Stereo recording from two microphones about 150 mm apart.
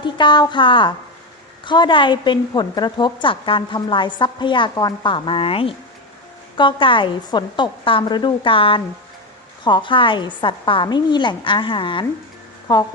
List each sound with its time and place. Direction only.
0.0 s a woman's voice: 30° left (ahead or behind)